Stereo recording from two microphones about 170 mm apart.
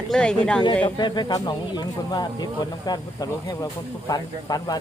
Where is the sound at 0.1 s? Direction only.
5° left (ahead or behind).